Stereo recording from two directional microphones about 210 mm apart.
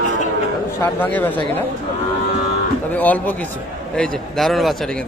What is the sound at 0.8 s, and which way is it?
Speech, 10° left (ahead or behind).